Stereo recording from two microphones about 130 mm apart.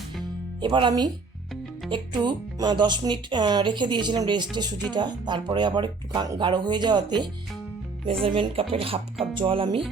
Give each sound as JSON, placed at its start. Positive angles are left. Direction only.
{"t": 0.6, "sound": "speech", "side_deg": -35}